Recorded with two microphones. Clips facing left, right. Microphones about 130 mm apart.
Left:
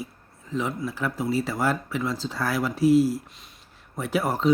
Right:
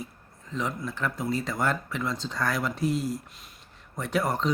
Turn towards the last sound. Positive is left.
turn(degrees=5)  # may be behind; listen again after turning